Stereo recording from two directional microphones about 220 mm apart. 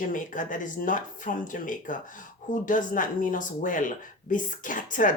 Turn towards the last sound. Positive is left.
turn(degrees=35)  # may be behind; listen again after turning